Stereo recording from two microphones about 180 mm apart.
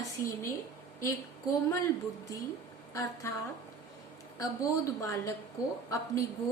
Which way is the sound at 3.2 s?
15° left (ahead or behind).